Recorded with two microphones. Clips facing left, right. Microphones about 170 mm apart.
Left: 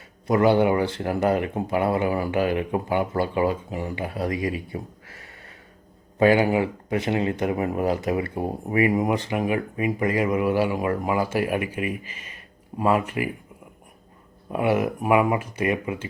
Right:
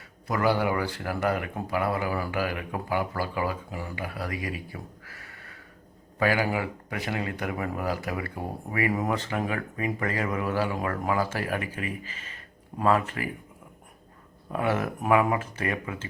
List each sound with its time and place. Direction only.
0.3 s speech: 25° left (ahead or behind)
14.5 s speech: 15° left (ahead or behind)